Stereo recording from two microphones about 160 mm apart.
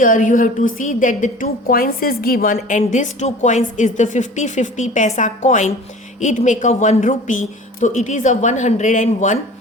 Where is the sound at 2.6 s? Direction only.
50° left (ahead or behind).